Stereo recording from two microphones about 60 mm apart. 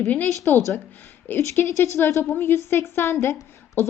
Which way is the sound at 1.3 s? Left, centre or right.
Left.